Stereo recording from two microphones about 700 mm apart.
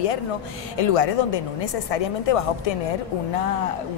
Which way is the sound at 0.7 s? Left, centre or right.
Left.